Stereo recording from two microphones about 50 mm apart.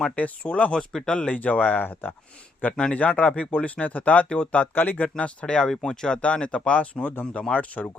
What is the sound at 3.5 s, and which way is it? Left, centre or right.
Speech, left.